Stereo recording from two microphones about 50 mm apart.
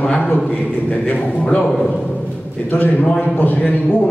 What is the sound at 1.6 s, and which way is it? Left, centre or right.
Speech, centre.